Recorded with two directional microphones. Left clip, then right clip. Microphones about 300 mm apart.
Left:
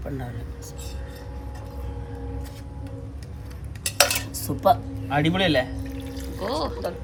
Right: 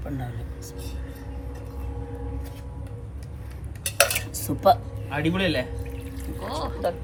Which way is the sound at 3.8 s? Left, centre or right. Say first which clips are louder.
Left 1 dB; left.